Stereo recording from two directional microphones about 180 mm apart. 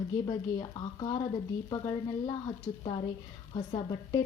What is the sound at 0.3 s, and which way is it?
Speech, 25° left (ahead or behind).